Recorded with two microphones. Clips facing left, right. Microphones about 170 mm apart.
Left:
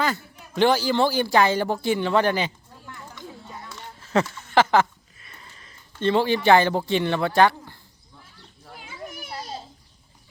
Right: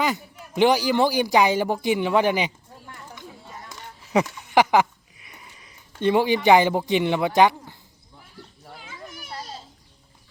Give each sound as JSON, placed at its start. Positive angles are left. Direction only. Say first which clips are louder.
{"t": 0.0, "sound": "a man's voice", "louder": "right 1 dB", "side_deg": -15}
{"t": 3.7, "sound": "a sound", "louder": "right 1 dB", "side_deg": -15}
{"t": 9.0, "sound": "children playing", "louder": "left 2 dB", "side_deg": 10}